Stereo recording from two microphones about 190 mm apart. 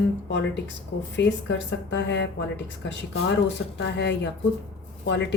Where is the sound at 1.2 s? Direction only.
70° left (ahead or behind).